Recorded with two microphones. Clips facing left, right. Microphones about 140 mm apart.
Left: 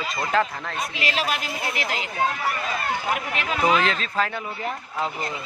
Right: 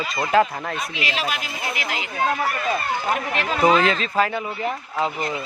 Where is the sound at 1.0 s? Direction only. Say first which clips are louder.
Left 2 dB; 40° left (ahead or behind).